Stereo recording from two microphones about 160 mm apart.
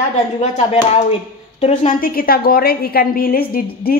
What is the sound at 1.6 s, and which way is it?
A woman's voice, 50° left (ahead or behind).